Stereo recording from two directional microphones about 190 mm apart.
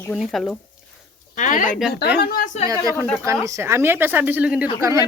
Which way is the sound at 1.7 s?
Centre (ahead or behind).